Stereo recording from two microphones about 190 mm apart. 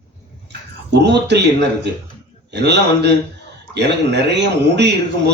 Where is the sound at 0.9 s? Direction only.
65° right (ahead or behind).